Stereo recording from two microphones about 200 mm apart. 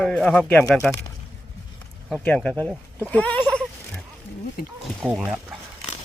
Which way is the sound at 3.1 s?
5° left (ahead or behind).